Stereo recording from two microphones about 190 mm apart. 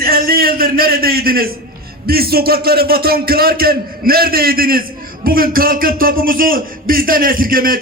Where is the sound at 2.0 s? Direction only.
50° right (ahead or behind).